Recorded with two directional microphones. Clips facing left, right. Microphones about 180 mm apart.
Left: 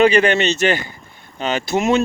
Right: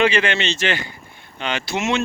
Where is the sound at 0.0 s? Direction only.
40° left (ahead or behind).